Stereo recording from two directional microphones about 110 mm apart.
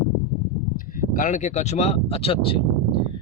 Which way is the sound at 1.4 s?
90° left.